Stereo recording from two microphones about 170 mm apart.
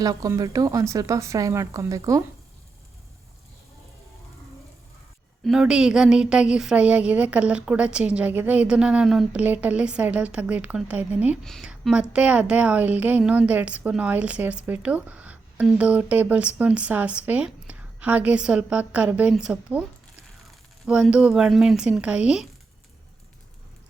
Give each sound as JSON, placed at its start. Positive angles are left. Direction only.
{"t": 0.0, "sound": "speech", "side_deg": -20}
{"t": 5.5, "sound": "a woman's voice", "side_deg": -5}
{"t": 20.8, "sound": "speech", "side_deg": -5}